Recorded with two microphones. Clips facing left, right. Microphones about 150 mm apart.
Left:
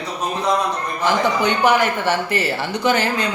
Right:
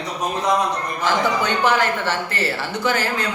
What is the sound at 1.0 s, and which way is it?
A man's voice, 15° left (ahead or behind).